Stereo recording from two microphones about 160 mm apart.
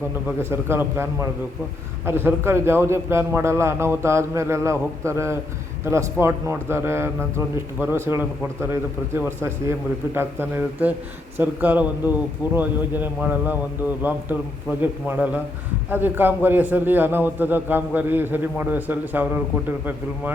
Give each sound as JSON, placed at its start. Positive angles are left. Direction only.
{"t": 0.3, "sound": "a man's voice", "side_deg": -15}
{"t": 14.8, "sound": "a man's voice", "side_deg": -10}